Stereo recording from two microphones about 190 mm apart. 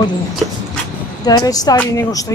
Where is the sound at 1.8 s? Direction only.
15° left (ahead or behind).